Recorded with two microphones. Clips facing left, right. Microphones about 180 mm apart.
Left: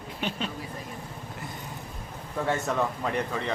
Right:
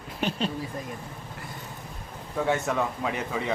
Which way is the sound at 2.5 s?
Centre (ahead or behind).